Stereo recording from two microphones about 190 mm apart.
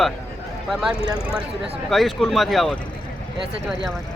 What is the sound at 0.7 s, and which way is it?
Speech, 5° right (ahead or behind).